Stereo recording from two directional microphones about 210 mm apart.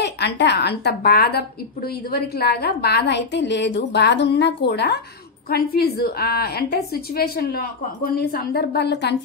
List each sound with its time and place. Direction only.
0.0 s a woman's voice: 55° left (ahead or behind)